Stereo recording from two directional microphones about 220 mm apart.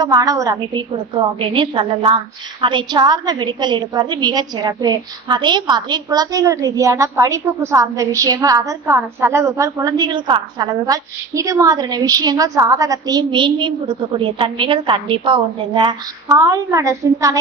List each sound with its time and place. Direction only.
0.0 s a woman's voice: 15° right (ahead or behind)